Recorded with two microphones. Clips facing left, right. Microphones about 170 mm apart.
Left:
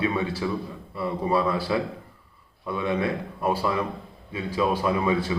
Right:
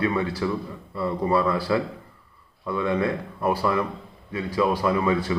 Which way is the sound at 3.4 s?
25° left (ahead or behind).